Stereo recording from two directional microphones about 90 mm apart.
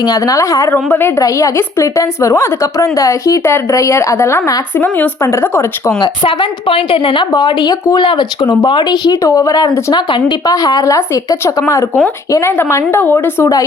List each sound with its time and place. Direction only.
0.0 s a woman's voice: 40° left (ahead or behind)
0.7 s speech: 25° left (ahead or behind)
1.2 s a woman's voice: 35° left (ahead or behind)
4.8 s speech: 20° left (ahead or behind)
5.2 s a woman's voice: 30° left (ahead or behind)
6.2 s a woman's voice: 80° left
7.3 s speech: 55° left (ahead or behind)
8.0 s speech: 60° left (ahead or behind); by 9.7 s 45° left (ahead or behind)
9.9 s speech: 60° left (ahead or behind)
10.5 s a woman's voice: 40° left (ahead or behind); by 13.5 s 25° left (ahead or behind)